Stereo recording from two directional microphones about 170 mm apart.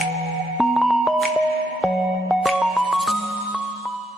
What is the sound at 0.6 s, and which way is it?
Music, centre (ahead or behind).